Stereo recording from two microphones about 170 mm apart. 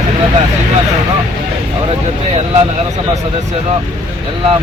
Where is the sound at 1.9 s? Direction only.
35° right (ahead or behind).